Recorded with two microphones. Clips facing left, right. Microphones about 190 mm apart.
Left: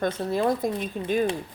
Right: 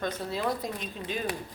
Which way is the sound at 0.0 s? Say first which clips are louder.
Left 6 dB; 50° left (ahead or behind).